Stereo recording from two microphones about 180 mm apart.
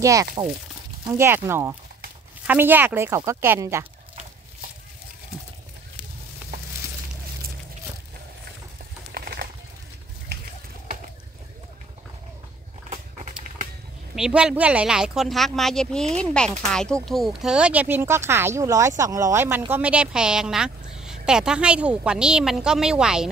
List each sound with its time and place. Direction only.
0.0 s speech: 20° right (ahead or behind)
9.1 s bird: 55° right (ahead or behind)
14.1 s speech: 5° right (ahead or behind)